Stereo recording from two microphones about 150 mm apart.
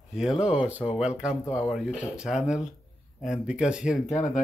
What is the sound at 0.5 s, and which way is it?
Speech, 10° right (ahead or behind).